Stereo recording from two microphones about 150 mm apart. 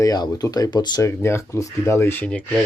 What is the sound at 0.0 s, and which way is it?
Speech, 25° left (ahead or behind).